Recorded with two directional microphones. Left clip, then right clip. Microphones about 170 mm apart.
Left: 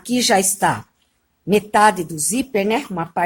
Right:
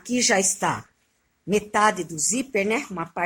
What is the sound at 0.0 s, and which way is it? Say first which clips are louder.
Speech: left 5 dB; 35° left (ahead or behind).